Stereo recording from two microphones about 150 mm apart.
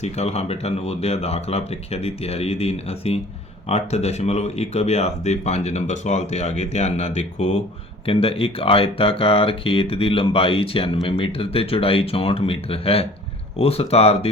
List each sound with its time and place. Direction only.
0.0 s speech: 45° left (ahead or behind)